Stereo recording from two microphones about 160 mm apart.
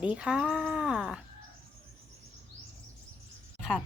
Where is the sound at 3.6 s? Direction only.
5° right (ahead or behind).